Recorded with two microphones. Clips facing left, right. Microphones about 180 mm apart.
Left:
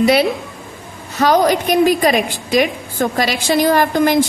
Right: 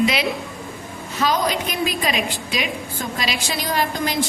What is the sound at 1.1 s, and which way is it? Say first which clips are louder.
A woman's voice: left 8 dB; 50° left (ahead or behind).